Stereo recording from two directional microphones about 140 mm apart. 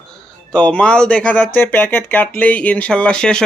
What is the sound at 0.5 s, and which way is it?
Speech, 5° left (ahead or behind).